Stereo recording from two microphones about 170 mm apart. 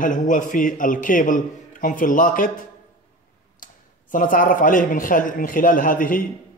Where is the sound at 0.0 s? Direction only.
50° left (ahead or behind).